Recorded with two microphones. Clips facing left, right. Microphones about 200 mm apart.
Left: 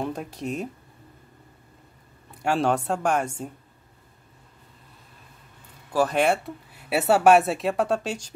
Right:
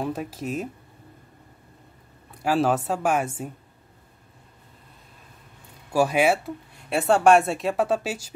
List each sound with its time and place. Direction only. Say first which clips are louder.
0.0 s speech: right 1 dB; 5° right (ahead or behind)
2.4 s speech: right 1 dB; centre (ahead or behind)
5.9 s speech: right 1 dB; 10° right (ahead or behind)